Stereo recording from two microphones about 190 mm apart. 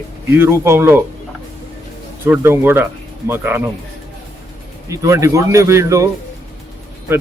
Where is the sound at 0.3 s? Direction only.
15° right (ahead or behind).